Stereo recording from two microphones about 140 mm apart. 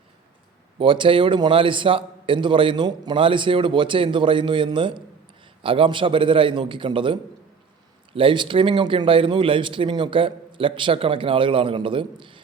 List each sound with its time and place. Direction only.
0.8 s speech: 35° right (ahead or behind)